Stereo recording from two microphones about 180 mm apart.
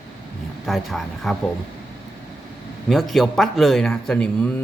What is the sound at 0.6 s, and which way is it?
Speech, centre (ahead or behind).